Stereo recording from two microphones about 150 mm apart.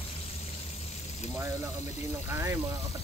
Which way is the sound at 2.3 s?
20° right (ahead or behind).